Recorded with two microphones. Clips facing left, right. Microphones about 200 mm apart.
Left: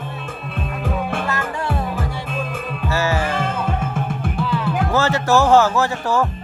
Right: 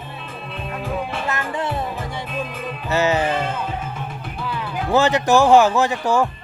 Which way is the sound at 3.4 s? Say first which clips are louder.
Left 3 dB; 50° left (ahead or behind).